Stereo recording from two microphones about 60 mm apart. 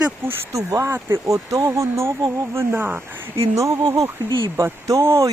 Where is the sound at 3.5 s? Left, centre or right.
Right.